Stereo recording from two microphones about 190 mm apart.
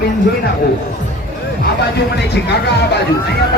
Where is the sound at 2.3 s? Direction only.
60° left (ahead or behind).